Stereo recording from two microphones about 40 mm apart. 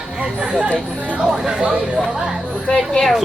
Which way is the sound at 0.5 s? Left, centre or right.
Right.